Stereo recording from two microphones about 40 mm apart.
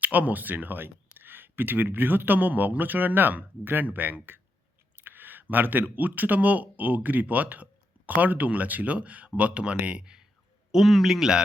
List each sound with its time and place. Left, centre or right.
0.0 s speech: right
10.0 s speech: centre
10.7 s a man's voice: centre